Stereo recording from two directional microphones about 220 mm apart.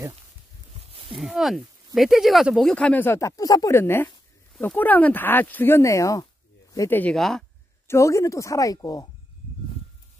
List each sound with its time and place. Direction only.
0.7 s a sound: 25° right (ahead or behind)
1.1 s speech: centre (ahead or behind)
7.9 s speech: 15° left (ahead or behind)